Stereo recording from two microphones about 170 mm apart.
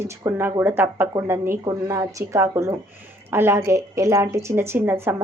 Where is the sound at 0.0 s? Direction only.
15° right (ahead or behind).